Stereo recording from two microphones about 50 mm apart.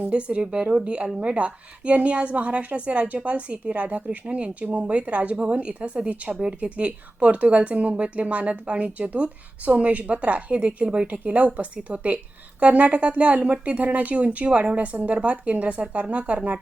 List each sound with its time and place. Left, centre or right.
0.1 s a woman's voice: right